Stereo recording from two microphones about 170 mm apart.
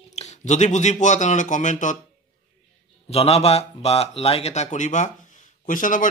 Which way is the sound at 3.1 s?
40° left (ahead or behind).